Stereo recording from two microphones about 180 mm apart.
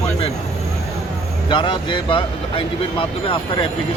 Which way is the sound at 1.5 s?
30° left (ahead or behind).